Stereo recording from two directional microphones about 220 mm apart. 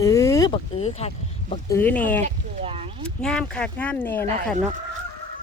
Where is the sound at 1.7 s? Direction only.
10° left (ahead or behind).